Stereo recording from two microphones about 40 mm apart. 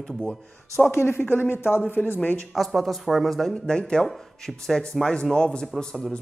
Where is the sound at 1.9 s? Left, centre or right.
Left.